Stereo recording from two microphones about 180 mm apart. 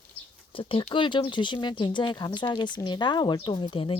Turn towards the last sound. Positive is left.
turn(degrees=30)  # may be behind; listen again after turning